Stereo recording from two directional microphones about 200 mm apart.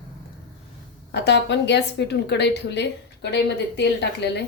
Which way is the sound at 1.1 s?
60° left (ahead or behind).